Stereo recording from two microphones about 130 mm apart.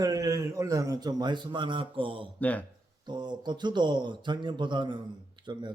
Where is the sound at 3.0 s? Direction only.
35° right (ahead or behind).